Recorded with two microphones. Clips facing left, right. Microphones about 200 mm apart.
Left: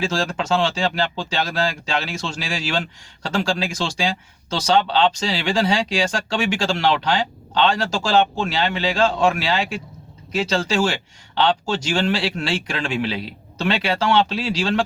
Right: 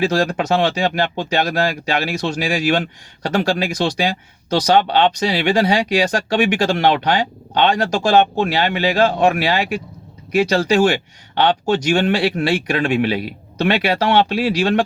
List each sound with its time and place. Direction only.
0.0 s speech: 60° right (ahead or behind)